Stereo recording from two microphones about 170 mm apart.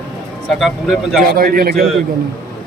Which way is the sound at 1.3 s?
60° right (ahead or behind).